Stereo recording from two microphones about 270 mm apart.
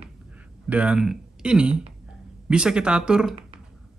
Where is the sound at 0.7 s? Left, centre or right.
Centre.